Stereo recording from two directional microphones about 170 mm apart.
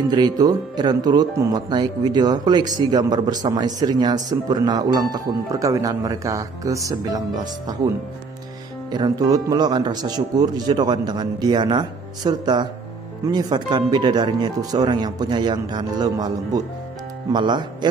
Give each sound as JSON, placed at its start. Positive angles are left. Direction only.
{"t": 0.1, "sound": "a man's voice", "side_deg": -25}
{"t": 8.9, "sound": "a man's voice", "side_deg": -25}